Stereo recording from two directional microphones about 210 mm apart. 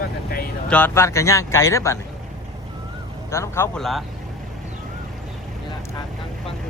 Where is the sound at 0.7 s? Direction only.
10° left (ahead or behind).